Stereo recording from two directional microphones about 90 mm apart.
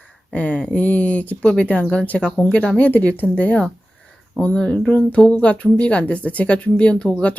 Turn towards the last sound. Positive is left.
turn(degrees=15)  # may be behind; listen again after turning